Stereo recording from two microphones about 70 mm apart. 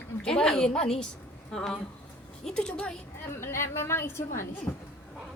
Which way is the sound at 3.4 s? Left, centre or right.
Left.